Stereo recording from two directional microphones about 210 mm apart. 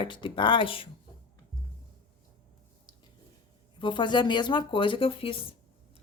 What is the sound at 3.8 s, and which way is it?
Speech, 20° left (ahead or behind).